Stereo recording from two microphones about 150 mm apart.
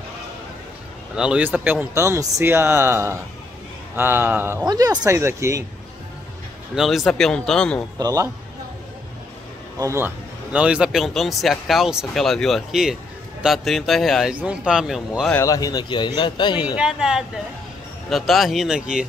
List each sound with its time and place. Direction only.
1.1 s speech: 5° right (ahead or behind)
4.6 s speech: 25° right (ahead or behind)
6.7 s a man's voice: centre (ahead or behind)
8.0 s speech: 20° right (ahead or behind)
9.8 s a man's voice: 20° right (ahead or behind)
15.3 s speech: 20° left (ahead or behind)
16.7 s a man's voice: 5° right (ahead or behind)